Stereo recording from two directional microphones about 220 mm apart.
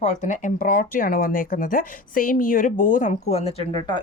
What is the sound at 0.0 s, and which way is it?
Speech, 30° left (ahead or behind).